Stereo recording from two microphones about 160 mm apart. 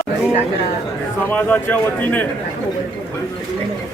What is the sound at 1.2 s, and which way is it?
Speech, 10° left (ahead or behind).